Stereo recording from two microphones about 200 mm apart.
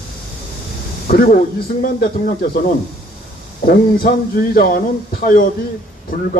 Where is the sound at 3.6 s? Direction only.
45° left (ahead or behind).